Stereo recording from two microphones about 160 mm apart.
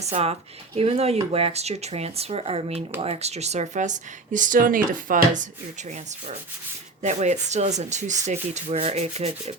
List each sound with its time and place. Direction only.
0.0 s speech: 40° right (ahead or behind)
7.0 s speech: 45° right (ahead or behind)